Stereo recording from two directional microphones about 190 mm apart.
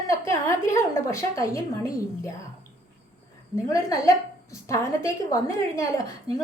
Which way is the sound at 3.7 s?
15° left (ahead or behind).